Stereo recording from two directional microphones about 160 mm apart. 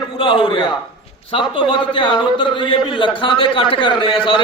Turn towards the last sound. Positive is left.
turn(degrees=35)  # may be behind; listen again after turning